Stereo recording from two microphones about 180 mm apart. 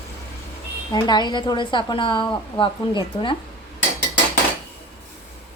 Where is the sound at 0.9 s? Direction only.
25° left (ahead or behind).